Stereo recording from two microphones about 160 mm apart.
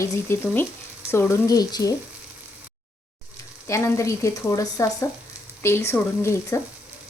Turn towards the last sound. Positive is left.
turn(degrees=15)  # may be behind; listen again after turning